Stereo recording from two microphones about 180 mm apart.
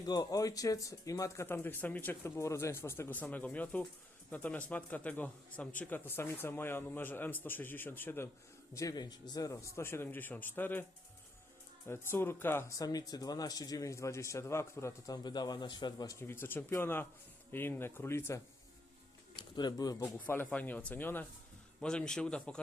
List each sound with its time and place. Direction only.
0.0 s speech: 20° left (ahead or behind)
11.9 s speech: 15° left (ahead or behind)
19.4 s a man's voice: 25° left (ahead or behind); by 22.5 s 5° left (ahead or behind)